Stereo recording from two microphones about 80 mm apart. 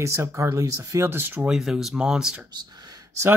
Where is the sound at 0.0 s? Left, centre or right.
Right.